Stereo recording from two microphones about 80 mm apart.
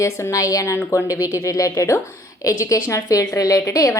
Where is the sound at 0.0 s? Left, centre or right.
Left.